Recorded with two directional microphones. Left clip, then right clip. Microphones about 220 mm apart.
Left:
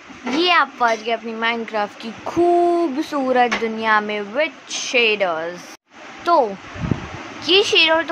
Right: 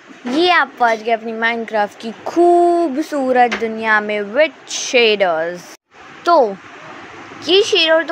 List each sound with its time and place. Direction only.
0.3 s a child's voice: 20° right (ahead or behind)